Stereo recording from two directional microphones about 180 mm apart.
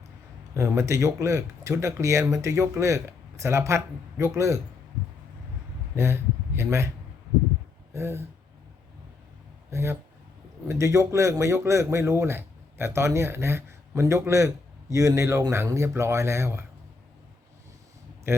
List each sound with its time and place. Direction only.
0.5 s speech: 15° right (ahead or behind)
6.0 s speech: 15° right (ahead or behind)
7.9 s speech: 15° right (ahead or behind)
9.6 s speech: 15° right (ahead or behind)
18.3 s speech: 15° right (ahead or behind)